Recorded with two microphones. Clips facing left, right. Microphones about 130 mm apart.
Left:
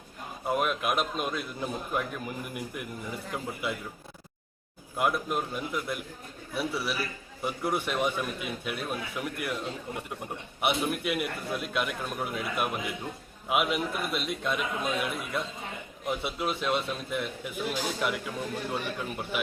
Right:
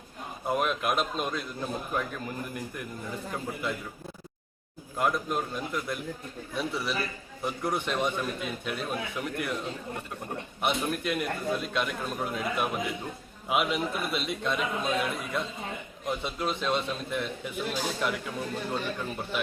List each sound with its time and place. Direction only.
0.4 s a man's voice: centre (ahead or behind)
4.9 s a man's voice: 5° left (ahead or behind)